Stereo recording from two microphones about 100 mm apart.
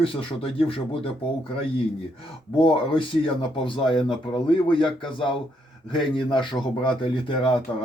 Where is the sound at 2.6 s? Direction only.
65° left (ahead or behind).